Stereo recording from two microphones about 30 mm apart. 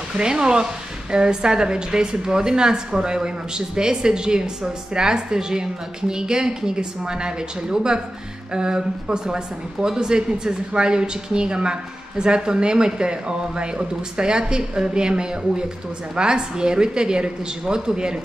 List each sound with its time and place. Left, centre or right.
0.2 s a woman's voice: right